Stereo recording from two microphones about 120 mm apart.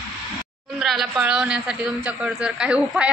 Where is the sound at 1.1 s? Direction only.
10° right (ahead or behind).